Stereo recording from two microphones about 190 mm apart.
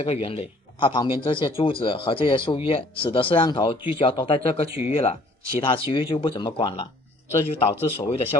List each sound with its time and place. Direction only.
0.0 s a man's voice: 30° left (ahead or behind)